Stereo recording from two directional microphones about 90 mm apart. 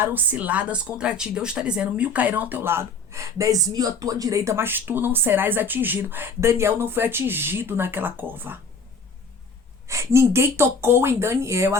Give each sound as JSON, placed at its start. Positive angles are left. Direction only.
{"t": 0.0, "sound": "speech", "side_deg": -20}
{"t": 9.8, "sound": "speech", "side_deg": -35}